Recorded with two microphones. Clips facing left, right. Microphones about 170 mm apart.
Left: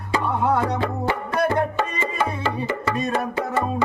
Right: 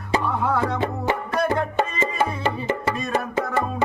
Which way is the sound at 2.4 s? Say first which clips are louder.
Right 1 dB; 20° right (ahead or behind).